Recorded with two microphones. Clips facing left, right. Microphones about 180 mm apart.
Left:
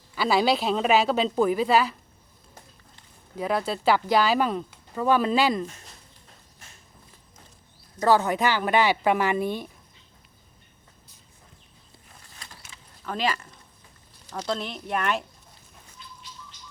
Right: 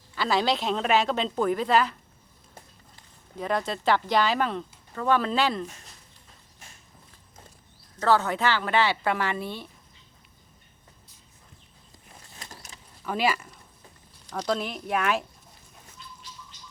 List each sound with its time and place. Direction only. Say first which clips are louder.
0.2 s speech: left 3 dB; 10° left (ahead or behind)
3.3 s speech: left 2 dB; 5° left (ahead or behind)
7.9 s speech: left 2 dB; 15° left (ahead or behind)
12.5 s mechanisms: right 3 dB; 40° right (ahead or behind)
13.1 s speech: right 2 dB; 10° right (ahead or behind)
14.3 s speech: right 2 dB; centre (ahead or behind)